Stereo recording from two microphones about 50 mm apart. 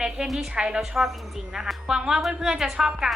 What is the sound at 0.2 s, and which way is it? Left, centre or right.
A woman's voice, centre.